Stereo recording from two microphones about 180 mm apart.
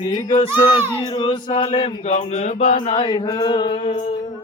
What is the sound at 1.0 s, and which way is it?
Music, 30° left (ahead or behind).